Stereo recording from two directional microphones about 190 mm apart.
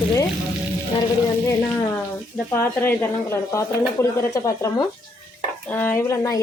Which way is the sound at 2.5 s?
10° left (ahead or behind).